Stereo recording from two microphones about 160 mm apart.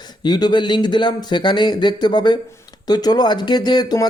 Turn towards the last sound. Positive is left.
turn(degrees=25)  # may be behind; listen again after turning